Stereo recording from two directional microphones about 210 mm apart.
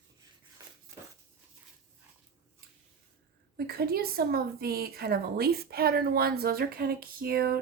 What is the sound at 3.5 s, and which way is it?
A woman's voice, 45° right (ahead or behind).